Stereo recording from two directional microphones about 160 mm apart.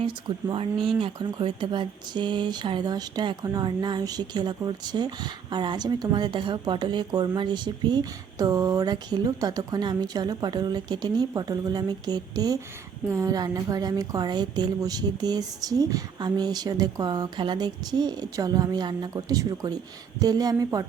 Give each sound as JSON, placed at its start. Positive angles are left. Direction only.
{"t": 0.0, "sound": "speech", "side_deg": -30}